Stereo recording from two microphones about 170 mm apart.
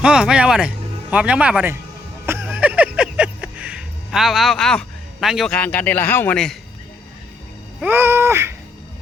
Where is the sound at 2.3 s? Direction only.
10° right (ahead or behind); by 6.5 s 5° left (ahead or behind).